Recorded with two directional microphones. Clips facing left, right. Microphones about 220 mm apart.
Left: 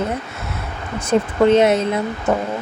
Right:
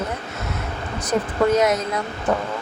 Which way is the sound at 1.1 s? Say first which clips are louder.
Left 5 dB; 25° left (ahead or behind).